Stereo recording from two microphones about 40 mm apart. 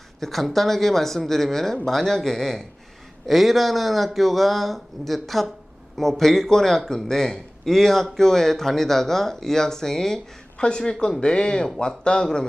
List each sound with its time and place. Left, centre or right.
0.2 s speech: centre
3.2 s speech: centre